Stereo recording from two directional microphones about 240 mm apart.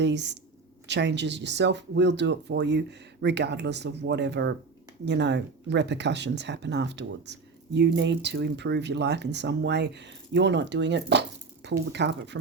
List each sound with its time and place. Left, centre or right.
0.0 s speech: right